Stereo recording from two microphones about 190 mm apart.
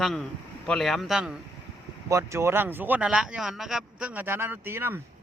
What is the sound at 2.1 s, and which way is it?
Speech, 15° right (ahead or behind).